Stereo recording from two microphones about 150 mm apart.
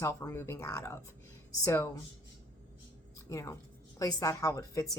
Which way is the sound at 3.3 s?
20° left (ahead or behind).